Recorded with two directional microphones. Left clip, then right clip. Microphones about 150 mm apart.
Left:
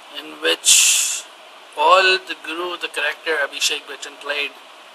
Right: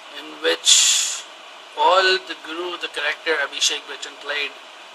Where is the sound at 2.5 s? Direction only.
5° left (ahead or behind).